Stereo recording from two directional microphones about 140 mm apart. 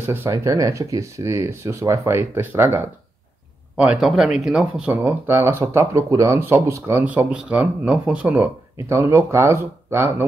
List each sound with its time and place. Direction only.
0.0 s speech: 15° right (ahead or behind)
8.8 s speech: 20° right (ahead or behind)